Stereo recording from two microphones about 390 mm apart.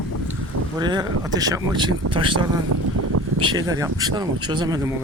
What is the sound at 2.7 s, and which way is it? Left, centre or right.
Vehicle, right.